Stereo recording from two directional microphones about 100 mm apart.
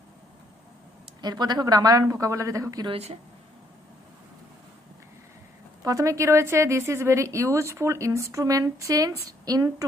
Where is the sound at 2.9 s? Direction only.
90° right.